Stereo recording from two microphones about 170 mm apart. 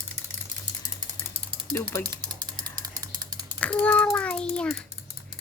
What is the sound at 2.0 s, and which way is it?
Mechanisms, 25° right (ahead or behind).